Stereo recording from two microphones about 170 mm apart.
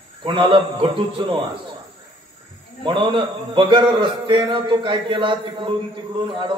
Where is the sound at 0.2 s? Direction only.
30° right (ahead or behind).